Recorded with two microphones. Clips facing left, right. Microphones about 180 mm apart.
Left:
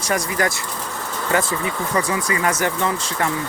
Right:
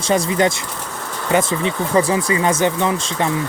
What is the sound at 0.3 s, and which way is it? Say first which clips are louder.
Speech: right 5 dB; 25° right (ahead or behind).